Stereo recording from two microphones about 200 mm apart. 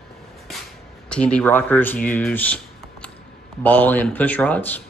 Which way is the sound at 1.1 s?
5° left (ahead or behind).